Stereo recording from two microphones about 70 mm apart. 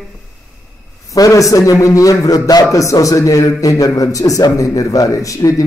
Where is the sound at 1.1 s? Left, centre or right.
Left.